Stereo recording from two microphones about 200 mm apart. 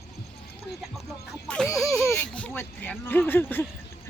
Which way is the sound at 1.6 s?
Centre (ahead or behind).